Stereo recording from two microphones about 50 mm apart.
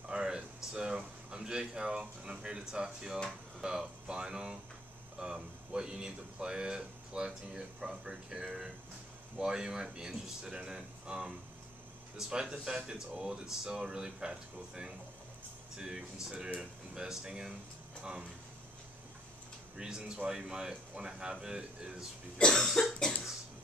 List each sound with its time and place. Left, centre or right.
0.1 s a sound: centre
3.3 s speech: centre
19.8 s speech: centre
22.4 s cough: centre